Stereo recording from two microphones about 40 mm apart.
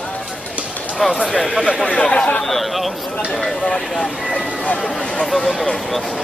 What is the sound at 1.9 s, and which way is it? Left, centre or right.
Speech, left.